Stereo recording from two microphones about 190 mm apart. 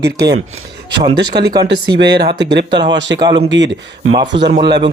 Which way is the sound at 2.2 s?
60° right (ahead or behind).